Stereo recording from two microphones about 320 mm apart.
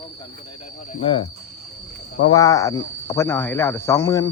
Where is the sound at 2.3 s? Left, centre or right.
Centre.